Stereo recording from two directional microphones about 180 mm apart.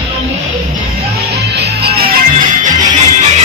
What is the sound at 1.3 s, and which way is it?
Music, 65° right (ahead or behind).